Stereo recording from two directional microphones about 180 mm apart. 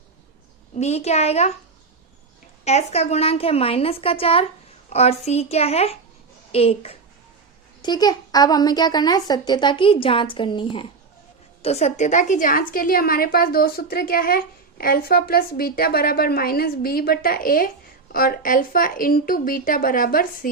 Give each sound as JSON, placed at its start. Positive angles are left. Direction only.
{"t": 0.8, "sound": "a woman's voice", "side_deg": 35}
{"t": 2.6, "sound": "a woman's voice", "side_deg": 35}
{"t": 7.8, "sound": "a woman's voice", "side_deg": 25}